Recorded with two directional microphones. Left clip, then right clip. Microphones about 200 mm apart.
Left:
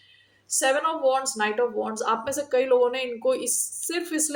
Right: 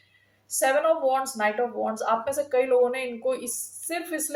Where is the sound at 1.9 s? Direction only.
50° left (ahead or behind).